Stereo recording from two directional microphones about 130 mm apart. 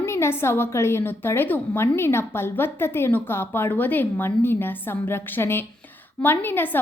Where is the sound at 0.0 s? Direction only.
20° left (ahead or behind).